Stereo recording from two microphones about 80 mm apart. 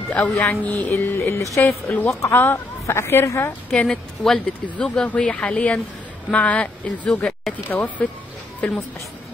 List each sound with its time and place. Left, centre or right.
0.1 s speech: centre; by 1.6 s left
1.6 s a woman's voice: left
3.7 s speech: centre
8.6 s speech: centre